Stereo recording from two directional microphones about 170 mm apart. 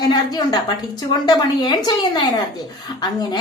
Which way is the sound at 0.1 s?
25° left (ahead or behind).